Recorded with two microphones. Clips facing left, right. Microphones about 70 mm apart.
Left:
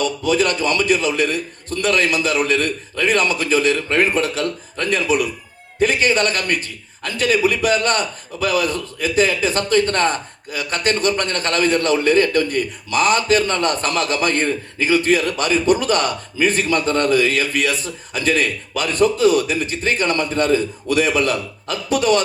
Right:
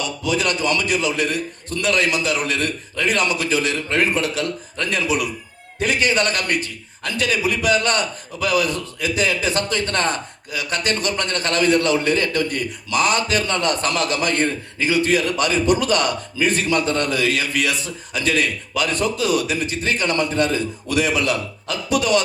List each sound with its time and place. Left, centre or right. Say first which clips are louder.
0.0 s a man's voice: left 4 dB; left